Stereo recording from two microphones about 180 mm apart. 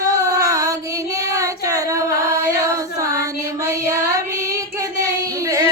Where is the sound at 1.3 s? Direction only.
20° right (ahead or behind).